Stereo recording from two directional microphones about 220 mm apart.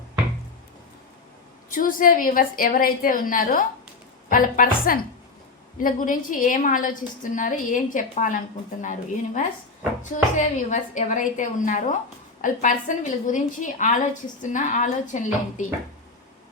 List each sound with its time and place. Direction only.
1.7 s a woman's voice: 40° left (ahead or behind)
5.7 s a woman's voice: 40° left (ahead or behind)